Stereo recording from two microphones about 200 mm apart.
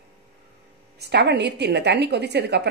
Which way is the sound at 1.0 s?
55° right (ahead or behind).